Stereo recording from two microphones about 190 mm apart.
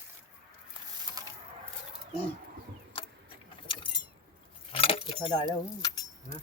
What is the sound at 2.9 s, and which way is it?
Vehicle, 30° left (ahead or behind).